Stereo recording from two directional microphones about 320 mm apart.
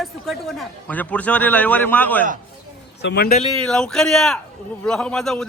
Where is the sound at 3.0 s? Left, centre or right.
Left.